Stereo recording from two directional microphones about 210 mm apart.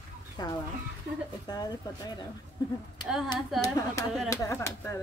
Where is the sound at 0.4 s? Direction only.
20° left (ahead or behind).